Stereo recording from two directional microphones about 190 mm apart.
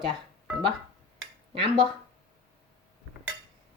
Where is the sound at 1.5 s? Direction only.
25° right (ahead or behind).